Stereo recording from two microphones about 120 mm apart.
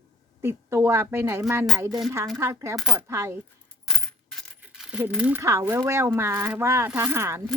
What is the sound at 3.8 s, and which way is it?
Coin, 5° left (ahead or behind).